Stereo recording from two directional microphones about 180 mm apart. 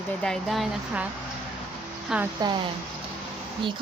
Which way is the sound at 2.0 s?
5° right (ahead or behind).